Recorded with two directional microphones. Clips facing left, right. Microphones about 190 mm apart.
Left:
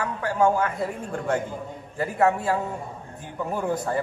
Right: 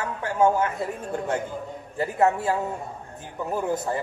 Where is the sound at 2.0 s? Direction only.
25° right (ahead or behind).